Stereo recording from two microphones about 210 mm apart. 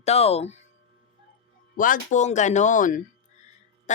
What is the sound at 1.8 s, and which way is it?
Speech, 40° left (ahead or behind).